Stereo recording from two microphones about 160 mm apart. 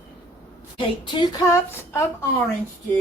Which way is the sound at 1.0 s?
30° left (ahead or behind).